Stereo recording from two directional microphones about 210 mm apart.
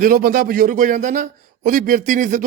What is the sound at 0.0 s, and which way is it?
A man's voice, 45° right (ahead or behind).